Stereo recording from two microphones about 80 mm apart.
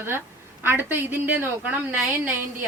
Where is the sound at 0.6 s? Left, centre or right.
Right.